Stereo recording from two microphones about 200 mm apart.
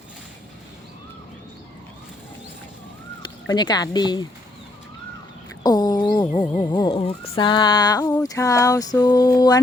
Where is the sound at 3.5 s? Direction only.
20° left (ahead or behind).